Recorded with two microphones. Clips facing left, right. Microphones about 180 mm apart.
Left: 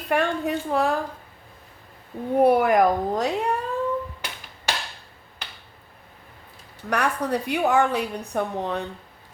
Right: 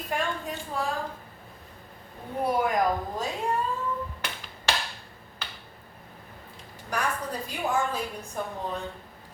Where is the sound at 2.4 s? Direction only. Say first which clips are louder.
Left 7 dB; 65° left (ahead or behind).